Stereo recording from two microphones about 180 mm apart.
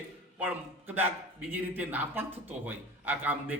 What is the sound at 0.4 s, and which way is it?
A man's voice, 10° right (ahead or behind).